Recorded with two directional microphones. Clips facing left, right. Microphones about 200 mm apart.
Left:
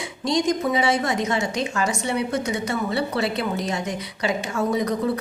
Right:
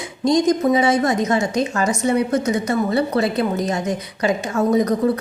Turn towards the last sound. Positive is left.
turn(degrees=-45)  # may be behind; listen again after turning